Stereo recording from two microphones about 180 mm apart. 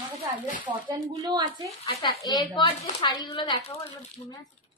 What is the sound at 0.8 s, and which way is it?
Speech, 25° right (ahead or behind).